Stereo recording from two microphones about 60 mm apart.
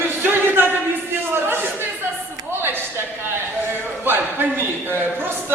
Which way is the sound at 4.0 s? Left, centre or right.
Right.